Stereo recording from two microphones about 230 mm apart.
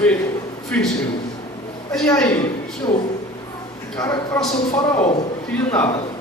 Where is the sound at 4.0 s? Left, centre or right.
Centre.